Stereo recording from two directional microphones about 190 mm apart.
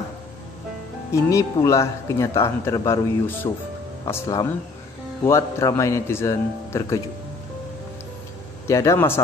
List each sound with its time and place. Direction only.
1.1 s a man's voice: 15° left (ahead or behind)
8.6 s a man's voice: 15° left (ahead or behind)